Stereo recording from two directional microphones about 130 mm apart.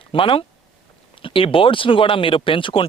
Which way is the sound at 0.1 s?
45° left (ahead or behind).